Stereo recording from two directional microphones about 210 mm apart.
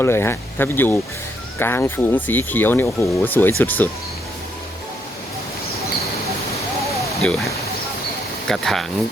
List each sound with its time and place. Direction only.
0.0 s speech: 10° left (ahead or behind)
7.2 s speech: centre (ahead or behind)